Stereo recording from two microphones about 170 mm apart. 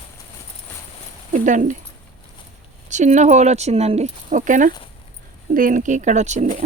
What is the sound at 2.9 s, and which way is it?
Speech, 45° right (ahead or behind).